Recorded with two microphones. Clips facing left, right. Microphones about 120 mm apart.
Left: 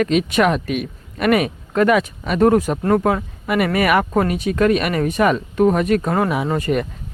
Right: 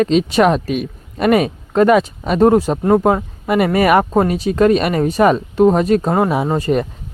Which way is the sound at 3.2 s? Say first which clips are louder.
Right 4 dB; 35° right (ahead or behind).